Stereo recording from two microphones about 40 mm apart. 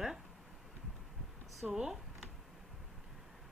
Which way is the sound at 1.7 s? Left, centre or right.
Centre.